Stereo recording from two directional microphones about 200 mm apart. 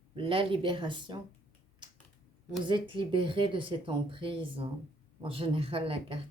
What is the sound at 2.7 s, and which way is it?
Speech, 25° right (ahead or behind).